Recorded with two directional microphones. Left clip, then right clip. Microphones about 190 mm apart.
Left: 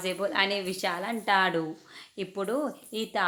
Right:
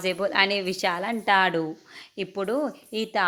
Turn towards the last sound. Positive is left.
turn(degrees=-25)  # may be behind; listen again after turning